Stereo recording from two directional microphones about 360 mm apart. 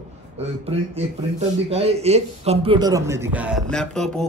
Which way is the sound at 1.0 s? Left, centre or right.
Centre.